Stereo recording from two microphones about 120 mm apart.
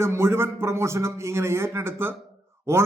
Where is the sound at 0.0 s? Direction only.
20° right (ahead or behind).